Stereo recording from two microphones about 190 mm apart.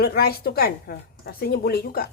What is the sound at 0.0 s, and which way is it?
A woman's voice, 55° left (ahead or behind).